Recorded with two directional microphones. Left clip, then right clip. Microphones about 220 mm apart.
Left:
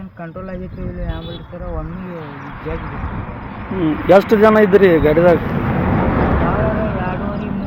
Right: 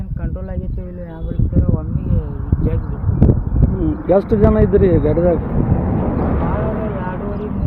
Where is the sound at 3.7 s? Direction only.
25° right (ahead or behind).